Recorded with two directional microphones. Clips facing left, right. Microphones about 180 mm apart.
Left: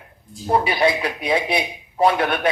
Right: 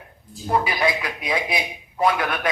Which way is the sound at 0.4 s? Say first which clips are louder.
Left 3 dB; 25° left (ahead or behind).